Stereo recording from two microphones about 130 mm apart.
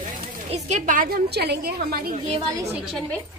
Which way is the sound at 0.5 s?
65° right (ahead or behind).